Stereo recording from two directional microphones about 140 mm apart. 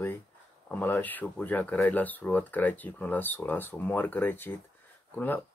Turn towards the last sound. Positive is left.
turn(degrees=15)  # may be behind; listen again after turning